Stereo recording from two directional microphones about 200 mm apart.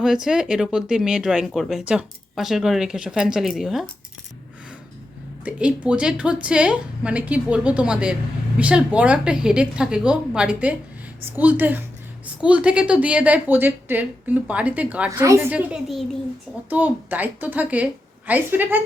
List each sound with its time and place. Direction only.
0.0 s speech: centre (ahead or behind)
5.5 s a woman's voice: 5° right (ahead or behind)